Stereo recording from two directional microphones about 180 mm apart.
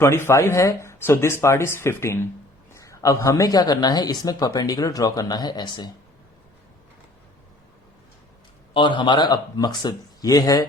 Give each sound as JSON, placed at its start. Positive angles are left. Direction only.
{"t": 0.0, "sound": "speech", "side_deg": 15}
{"t": 8.7, "sound": "speech", "side_deg": 25}